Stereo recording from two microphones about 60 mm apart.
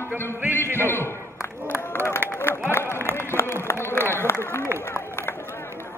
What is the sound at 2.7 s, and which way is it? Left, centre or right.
Run, left.